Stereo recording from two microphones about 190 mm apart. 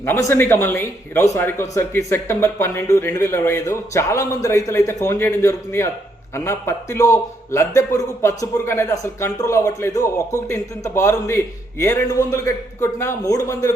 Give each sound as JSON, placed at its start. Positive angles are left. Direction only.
{"t": 0.0, "sound": "a man's voice", "side_deg": 15}